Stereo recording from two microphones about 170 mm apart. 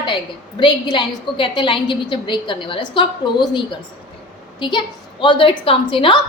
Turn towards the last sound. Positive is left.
turn(degrees=30)  # may be behind; listen again after turning